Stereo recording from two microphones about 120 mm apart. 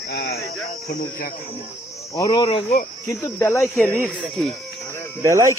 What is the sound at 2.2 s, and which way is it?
Speech, 45° left (ahead or behind).